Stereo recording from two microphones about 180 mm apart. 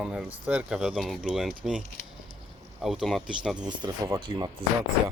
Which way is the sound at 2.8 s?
Centre (ahead or behind).